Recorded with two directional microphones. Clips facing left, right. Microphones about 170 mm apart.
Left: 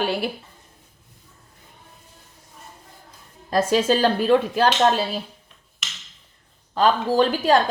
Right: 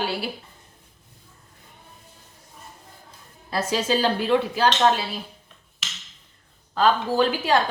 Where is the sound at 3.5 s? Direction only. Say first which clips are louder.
Left 5 dB; 45° left (ahead or behind).